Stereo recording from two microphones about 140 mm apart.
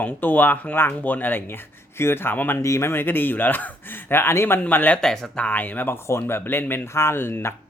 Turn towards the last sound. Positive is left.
turn(degrees=15)  # may be behind; listen again after turning